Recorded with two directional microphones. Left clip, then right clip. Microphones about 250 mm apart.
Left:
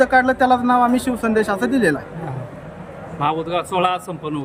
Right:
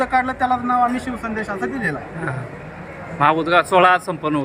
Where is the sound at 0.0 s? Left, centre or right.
Centre.